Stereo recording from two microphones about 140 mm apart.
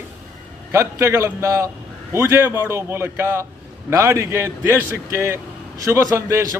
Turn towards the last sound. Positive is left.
turn(degrees=-20)  # may be behind; listen again after turning